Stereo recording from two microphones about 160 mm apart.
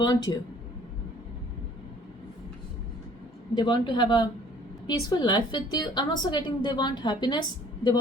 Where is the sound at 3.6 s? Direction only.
30° left (ahead or behind).